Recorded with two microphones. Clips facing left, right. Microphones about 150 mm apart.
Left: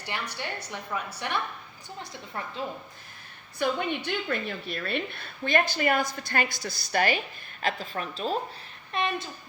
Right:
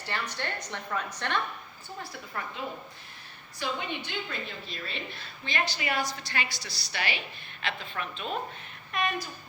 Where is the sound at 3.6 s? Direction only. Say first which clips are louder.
Left 6 dB; 55° left (ahead or behind).